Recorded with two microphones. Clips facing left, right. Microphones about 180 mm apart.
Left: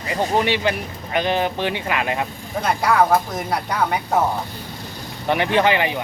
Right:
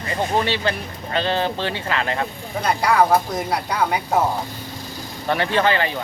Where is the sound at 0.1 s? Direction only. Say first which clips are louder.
Left 2 dB; 15° left (ahead or behind).